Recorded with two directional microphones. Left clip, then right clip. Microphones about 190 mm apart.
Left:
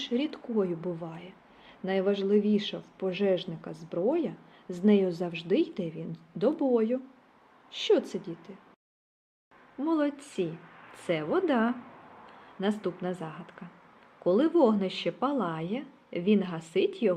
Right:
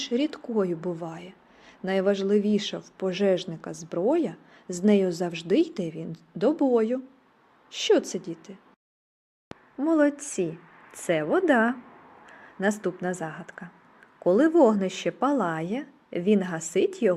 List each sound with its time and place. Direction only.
0.0 s a woman's voice: 30° right (ahead or behind)
9.8 s a woman's voice: 30° right (ahead or behind)
12.8 s a woman's voice: 35° right (ahead or behind)